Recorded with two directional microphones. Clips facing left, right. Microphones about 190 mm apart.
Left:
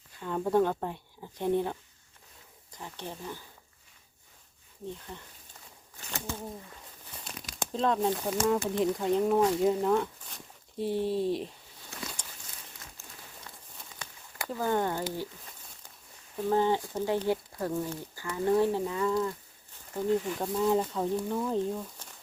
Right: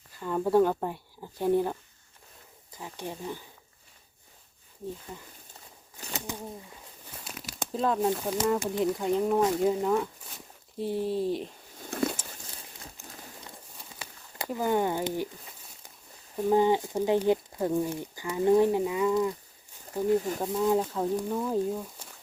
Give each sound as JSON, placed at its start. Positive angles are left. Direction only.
{"t": 0.2, "sound": "speech", "side_deg": -5}
{"t": 5.1, "sound": "speech", "side_deg": -5}
{"t": 7.3, "sound": "crumpling", "side_deg": -5}
{"t": 8.2, "sound": "speech", "side_deg": 0}
{"t": 11.9, "sound": "a sound", "side_deg": -50}
{"t": 13.0, "sound": "a sound", "side_deg": -15}
{"t": 14.3, "sound": "speech", "side_deg": -15}
{"t": 16.5, "sound": "speech", "side_deg": -15}
{"t": 20.4, "sound": "speech", "side_deg": 0}